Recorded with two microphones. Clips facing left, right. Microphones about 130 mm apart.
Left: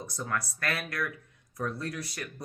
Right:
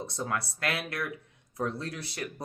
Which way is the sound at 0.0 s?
25° right (ahead or behind).